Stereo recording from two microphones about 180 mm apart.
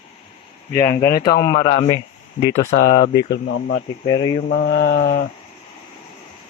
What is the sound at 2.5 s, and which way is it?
Speech, 40° left (ahead or behind).